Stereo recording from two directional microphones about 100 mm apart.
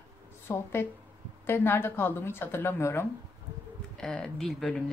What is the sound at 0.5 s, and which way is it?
Speech, 20° left (ahead or behind).